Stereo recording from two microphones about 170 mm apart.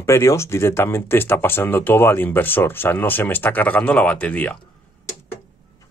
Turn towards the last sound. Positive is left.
turn(degrees=10)  # may be behind; listen again after turning